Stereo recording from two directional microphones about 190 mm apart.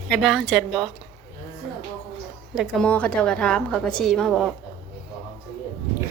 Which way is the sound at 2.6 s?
5° left (ahead or behind).